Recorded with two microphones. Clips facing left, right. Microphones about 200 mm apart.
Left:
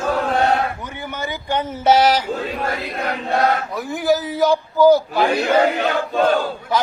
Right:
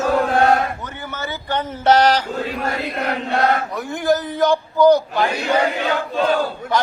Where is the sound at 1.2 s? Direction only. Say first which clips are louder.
Left 1 dB; 10° left (ahead or behind).